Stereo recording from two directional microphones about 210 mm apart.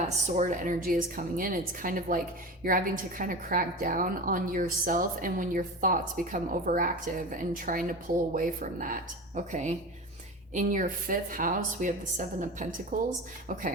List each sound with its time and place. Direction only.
0.3 s a woman's voice: 35° right (ahead or behind)